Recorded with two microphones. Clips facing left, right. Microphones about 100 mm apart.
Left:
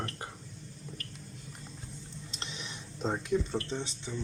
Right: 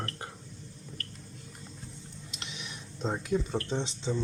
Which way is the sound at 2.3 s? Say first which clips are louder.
Even; 35° left (ahead or behind).